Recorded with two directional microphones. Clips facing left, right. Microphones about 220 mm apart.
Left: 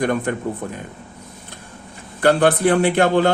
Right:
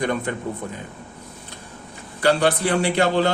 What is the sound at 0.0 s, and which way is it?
Speech, 50° left (ahead or behind).